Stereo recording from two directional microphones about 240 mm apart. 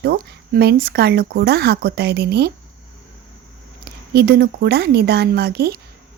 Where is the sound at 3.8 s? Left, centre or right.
Right.